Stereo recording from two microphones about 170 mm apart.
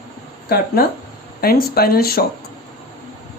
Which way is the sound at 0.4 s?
60° left (ahead or behind).